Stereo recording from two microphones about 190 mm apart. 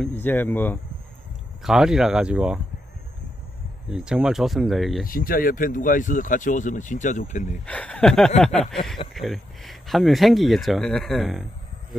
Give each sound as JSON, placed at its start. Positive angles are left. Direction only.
{"t": 0.0, "sound": "speech", "side_deg": 10}
{"t": 1.6, "sound": "speech", "side_deg": -5}
{"t": 3.9, "sound": "speech", "side_deg": -5}
{"t": 5.0, "sound": "speech", "side_deg": 50}
{"t": 7.6, "sound": "speech", "side_deg": 5}